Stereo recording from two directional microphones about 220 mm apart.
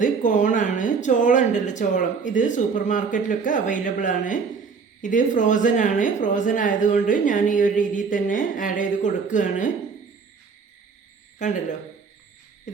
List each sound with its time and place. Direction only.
0.0 s a woman's voice: 35° left (ahead or behind)
11.3 s speech: 35° left (ahead or behind)
12.7 s a sound: 35° left (ahead or behind)